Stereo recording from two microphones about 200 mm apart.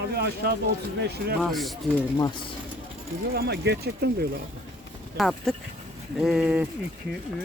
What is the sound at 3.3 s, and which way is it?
Speech, 55° right (ahead or behind).